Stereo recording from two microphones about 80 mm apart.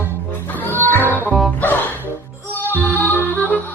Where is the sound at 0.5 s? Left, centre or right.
Left.